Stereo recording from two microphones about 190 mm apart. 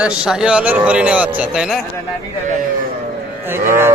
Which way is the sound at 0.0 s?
5° right (ahead or behind).